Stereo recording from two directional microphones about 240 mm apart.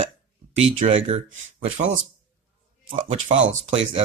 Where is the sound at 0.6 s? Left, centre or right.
Right.